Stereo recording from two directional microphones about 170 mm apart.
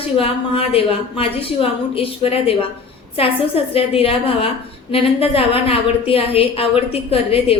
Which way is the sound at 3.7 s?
35° left (ahead or behind).